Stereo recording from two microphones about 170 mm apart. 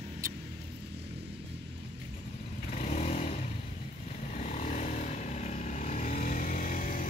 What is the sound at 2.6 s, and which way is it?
Vehicle, 40° left (ahead or behind).